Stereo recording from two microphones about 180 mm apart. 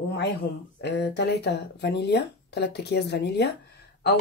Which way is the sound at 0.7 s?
70° left (ahead or behind).